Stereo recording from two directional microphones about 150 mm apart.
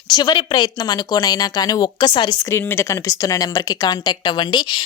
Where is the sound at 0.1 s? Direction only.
30° left (ahead or behind).